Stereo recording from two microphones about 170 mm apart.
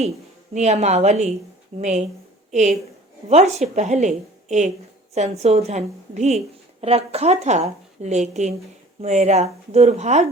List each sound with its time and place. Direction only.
0.5 s a woman's voice: 40° right (ahead or behind)